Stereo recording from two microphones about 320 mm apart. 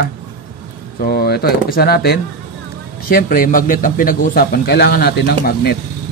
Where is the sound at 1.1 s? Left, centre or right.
Left.